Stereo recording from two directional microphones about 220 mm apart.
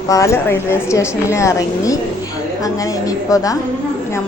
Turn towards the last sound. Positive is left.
turn(degrees=15)  # may be behind; listen again after turning